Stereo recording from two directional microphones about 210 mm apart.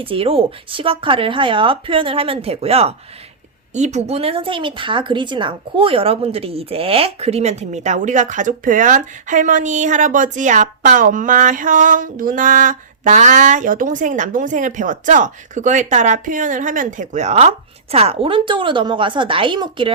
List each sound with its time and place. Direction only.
0.0 s speech: 25° right (ahead or behind)